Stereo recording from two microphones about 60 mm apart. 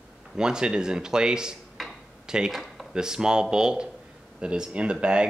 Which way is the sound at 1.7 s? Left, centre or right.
Centre.